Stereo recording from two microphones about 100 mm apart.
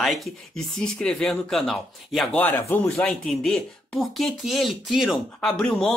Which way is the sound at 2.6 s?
30° left (ahead or behind).